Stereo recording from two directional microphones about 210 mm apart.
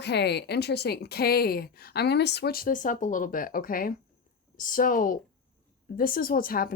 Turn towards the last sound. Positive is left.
turn(degrees=45)  # may be behind; listen again after turning